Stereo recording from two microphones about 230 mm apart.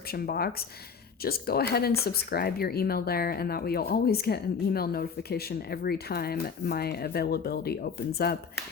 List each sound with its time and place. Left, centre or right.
0.1 s speech: left